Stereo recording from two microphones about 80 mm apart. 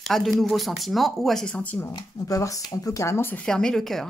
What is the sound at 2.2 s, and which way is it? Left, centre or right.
Speech, left.